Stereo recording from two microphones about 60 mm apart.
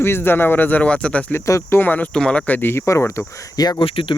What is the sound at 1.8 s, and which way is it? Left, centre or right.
Speech, left.